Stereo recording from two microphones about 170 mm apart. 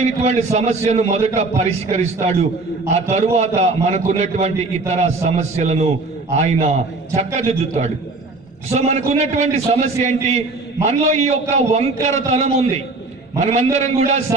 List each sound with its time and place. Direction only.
0.0 s a man's voice: 40° right (ahead or behind)